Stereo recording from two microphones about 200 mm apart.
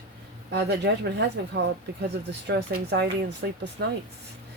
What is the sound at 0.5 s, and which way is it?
Speech, 55° right (ahead or behind).